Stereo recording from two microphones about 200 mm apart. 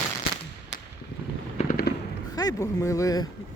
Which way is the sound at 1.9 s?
55° left (ahead or behind).